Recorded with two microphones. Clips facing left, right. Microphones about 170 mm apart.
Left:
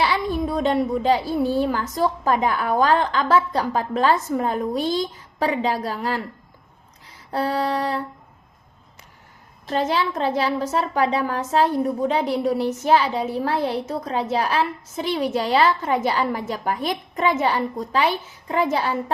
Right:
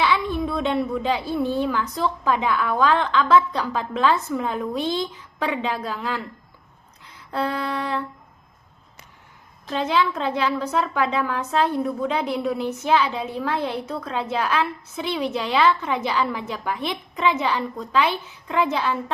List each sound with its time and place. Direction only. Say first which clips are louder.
0.0 s a sound: even; 40° left (ahead or behind)
1.5 s a woman's voice: left 2 dB; 40° left (ahead or behind)
7.3 s a woman's voice: left 3 dB; 40° left (ahead or behind)
9.6 s a woman's voice: even; 40° left (ahead or behind)